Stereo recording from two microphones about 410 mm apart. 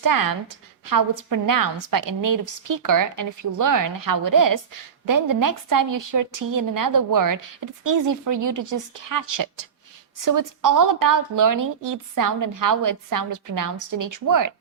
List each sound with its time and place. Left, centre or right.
0.0 s a woman's voice: right